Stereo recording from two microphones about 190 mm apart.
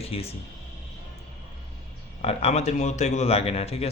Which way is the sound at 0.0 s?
30° left (ahead or behind).